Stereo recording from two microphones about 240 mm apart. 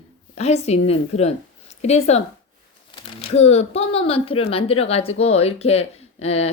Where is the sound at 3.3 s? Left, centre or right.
Left.